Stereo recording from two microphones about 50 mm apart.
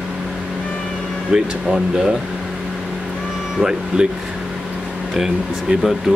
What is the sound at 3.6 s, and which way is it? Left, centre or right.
Speech, centre.